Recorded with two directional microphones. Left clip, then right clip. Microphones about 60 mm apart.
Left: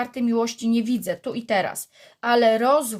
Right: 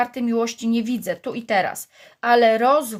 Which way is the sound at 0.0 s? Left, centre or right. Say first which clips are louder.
Right 2 dB; right.